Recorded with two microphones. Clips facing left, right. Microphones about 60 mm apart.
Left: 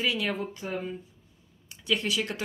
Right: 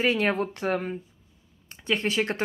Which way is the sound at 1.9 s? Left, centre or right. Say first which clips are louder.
Right 3 dB; right.